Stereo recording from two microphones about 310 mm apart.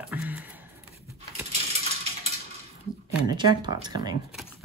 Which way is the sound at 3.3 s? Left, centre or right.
Centre.